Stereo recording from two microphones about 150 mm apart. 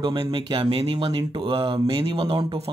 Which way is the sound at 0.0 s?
35° right (ahead or behind).